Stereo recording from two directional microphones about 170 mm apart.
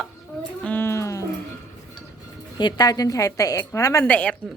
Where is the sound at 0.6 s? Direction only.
10° left (ahead or behind).